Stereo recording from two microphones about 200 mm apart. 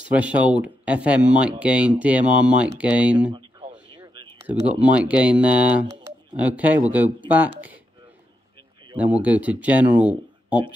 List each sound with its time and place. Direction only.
0.1 s speech: 5° right (ahead or behind)
3.3 s a sound: 20° right (ahead or behind)
4.4 s speech: 10° right (ahead or behind)
8.9 s speech: 5° right (ahead or behind)